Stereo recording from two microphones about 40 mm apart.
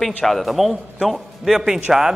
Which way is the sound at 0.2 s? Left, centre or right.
Centre.